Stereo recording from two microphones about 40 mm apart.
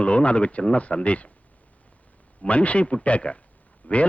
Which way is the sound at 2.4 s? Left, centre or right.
Left.